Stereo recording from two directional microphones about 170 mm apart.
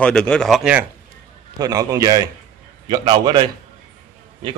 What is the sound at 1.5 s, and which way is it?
A man's voice, 20° right (ahead or behind).